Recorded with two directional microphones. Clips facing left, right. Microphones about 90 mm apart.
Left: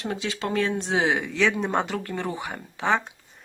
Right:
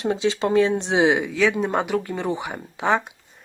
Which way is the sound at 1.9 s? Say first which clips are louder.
Right 5 dB; 15° right (ahead or behind).